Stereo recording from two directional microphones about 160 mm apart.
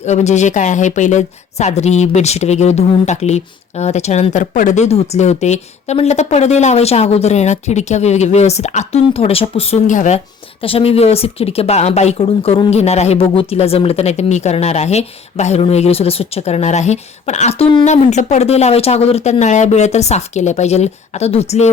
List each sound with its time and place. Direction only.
0.0 s a woman's voice: 45° left (ahead or behind)
10.6 s a woman's voice: 35° left (ahead or behind)